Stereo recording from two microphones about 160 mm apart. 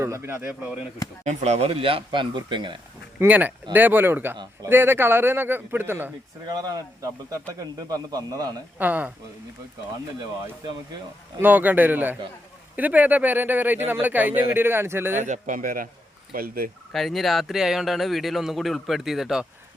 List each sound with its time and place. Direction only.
0.0 s speech: 15° right (ahead or behind)
1.2 s speech: 45° right (ahead or behind); by 2.7 s 30° right (ahead or behind)
3.2 s speech: 10° right (ahead or behind)
6.5 s a man's voice: 25° right (ahead or behind)
8.8 s speech: 10° right (ahead or behind)
11.3 s speech: 10° right (ahead or behind)
15.2 s a man's voice: 50° right (ahead or behind)
16.9 s speech: centre (ahead or behind)